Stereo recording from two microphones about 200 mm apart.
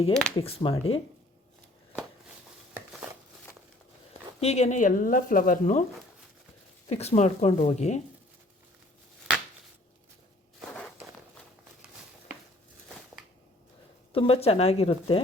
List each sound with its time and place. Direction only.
0.1 s speech: 5° left (ahead or behind)
0.3 s speech: 25° left (ahead or behind)
2.7 s a sound: 10° right (ahead or behind)
4.4 s speech: 30° left (ahead or behind)
6.8 s speech: 30° left (ahead or behind)
14.1 s speech: 25° left (ahead or behind)